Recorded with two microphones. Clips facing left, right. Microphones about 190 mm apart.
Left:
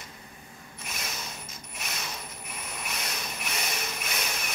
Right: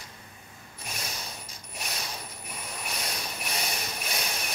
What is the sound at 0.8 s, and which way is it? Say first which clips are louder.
Mechanisms: even; 35° right (ahead or behind).